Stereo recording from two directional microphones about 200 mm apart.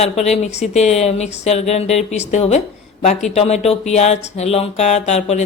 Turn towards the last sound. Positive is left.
turn(degrees=35)  # may be behind; listen again after turning